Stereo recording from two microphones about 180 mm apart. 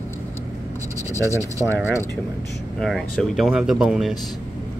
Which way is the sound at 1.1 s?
15° left (ahead or behind).